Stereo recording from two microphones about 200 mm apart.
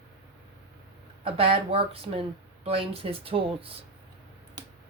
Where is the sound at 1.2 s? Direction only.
25° right (ahead or behind).